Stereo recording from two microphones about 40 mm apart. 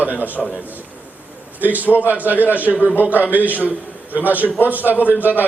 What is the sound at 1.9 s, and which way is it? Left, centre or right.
Speech, left.